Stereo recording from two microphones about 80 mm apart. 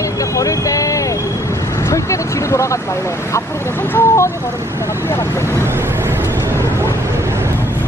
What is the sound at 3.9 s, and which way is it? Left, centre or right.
Speech, left.